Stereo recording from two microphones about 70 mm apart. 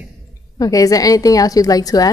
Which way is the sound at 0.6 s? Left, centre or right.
Left.